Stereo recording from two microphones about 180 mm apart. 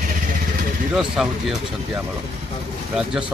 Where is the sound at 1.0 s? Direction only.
Centre (ahead or behind).